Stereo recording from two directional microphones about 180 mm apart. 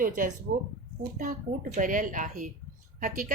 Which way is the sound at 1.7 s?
45° right (ahead or behind).